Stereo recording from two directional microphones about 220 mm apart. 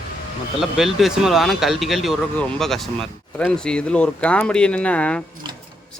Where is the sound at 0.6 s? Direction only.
Centre (ahead or behind).